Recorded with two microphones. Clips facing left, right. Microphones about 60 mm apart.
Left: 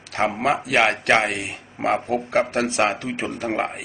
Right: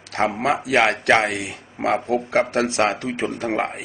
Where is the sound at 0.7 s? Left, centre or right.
Right.